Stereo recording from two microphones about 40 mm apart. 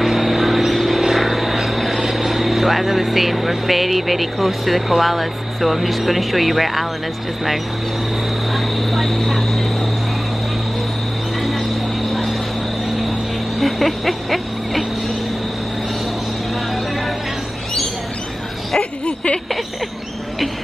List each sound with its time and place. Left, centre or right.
0.0 s vehicle: centre
1.1 s speech: centre
8.5 s vehicle: centre
11.4 s cricket: centre
13.6 s a sound: centre
18.8 s a sound: left